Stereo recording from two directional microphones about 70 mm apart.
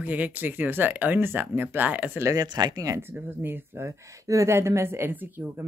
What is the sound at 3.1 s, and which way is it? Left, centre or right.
Speech, right.